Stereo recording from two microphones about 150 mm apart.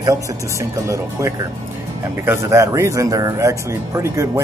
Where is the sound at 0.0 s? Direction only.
20° right (ahead or behind).